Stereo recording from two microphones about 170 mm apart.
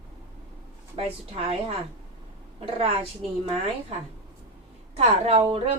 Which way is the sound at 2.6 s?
35° right (ahead or behind).